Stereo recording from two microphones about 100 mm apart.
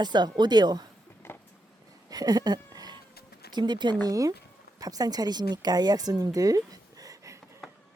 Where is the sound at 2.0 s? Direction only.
40° right (ahead or behind).